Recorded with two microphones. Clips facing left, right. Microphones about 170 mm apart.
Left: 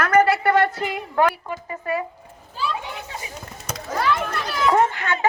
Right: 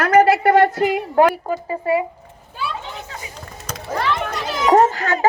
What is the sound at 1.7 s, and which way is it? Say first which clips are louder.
Speech: right 6 dB; 25° right (ahead or behind).